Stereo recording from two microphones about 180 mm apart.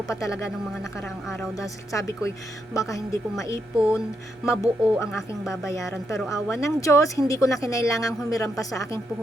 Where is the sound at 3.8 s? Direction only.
5° right (ahead or behind).